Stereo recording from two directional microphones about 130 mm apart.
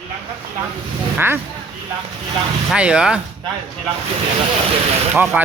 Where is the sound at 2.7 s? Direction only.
10° right (ahead or behind).